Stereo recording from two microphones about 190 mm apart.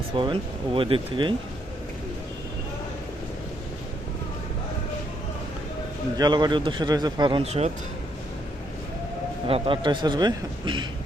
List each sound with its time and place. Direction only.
0.2 s a man's voice: 25° right (ahead or behind)
6.1 s a man's voice: 20° right (ahead or behind)
9.5 s a man's voice: 25° right (ahead or behind)